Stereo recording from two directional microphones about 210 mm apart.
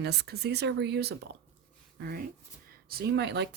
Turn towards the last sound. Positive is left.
turn(degrees=-55)  # may be behind; listen again after turning